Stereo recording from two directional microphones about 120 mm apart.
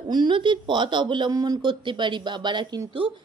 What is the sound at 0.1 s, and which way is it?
A woman's voice, 40° right (ahead or behind).